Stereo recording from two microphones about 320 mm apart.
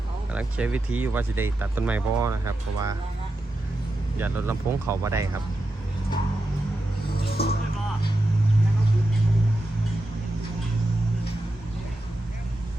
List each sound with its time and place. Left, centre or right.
0.3 s speech: centre
4.2 s speech: centre
7.3 s music: left